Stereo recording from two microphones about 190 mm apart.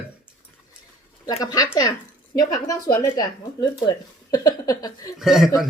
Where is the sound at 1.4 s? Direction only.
20° left (ahead or behind).